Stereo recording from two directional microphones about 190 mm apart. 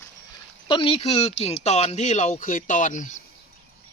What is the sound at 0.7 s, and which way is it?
Speech, 25° left (ahead or behind).